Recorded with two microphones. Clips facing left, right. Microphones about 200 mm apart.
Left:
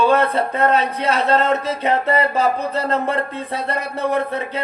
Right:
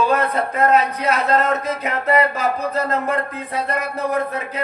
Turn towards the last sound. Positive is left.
turn(degrees=30)  # may be behind; listen again after turning